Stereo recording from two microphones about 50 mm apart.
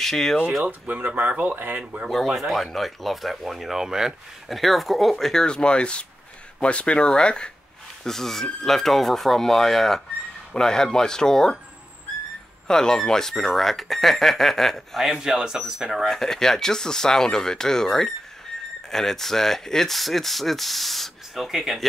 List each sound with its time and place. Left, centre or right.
0.0 s speech: centre
0.7 s speech: right
1.8 s speech: right
2.0 s speech: centre
4.5 s speech: centre
8.0 s speech: centre
12.6 s speech: centre
15.1 s speech: centre
15.9 s speech: centre